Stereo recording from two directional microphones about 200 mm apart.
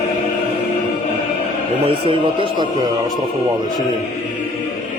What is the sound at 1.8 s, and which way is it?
A man's voice, 25° right (ahead or behind).